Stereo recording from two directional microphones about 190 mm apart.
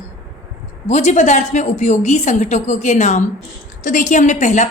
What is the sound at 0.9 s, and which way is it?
A woman's voice, 35° left (ahead or behind).